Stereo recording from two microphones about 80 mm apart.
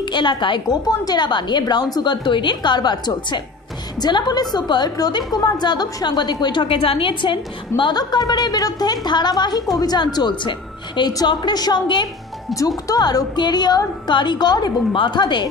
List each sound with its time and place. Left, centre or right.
0.0 s a woman's voice: left
0.7 s a woman's voice: left
12.5 s a woman's voice: left